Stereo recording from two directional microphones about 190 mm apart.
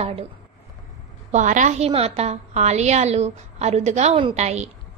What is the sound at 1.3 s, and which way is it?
A woman's voice, 40° right (ahead or behind).